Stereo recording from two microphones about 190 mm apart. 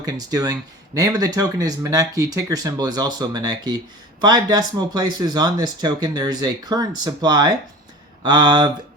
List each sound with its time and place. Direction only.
0.0 s speech: 20° right (ahead or behind)